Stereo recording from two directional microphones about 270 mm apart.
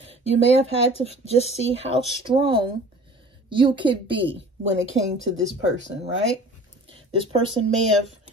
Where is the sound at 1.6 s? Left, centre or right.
Right.